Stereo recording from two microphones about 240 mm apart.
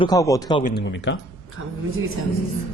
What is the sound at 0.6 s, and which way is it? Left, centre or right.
Speech, left.